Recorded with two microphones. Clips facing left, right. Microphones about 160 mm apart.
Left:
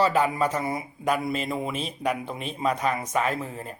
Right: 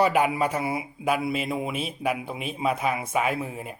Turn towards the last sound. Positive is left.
turn(degrees=-10)  # may be behind; listen again after turning